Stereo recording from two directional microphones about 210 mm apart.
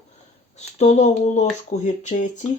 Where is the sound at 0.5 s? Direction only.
30° left (ahead or behind).